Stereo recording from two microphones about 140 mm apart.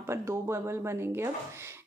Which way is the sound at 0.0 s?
20° right (ahead or behind).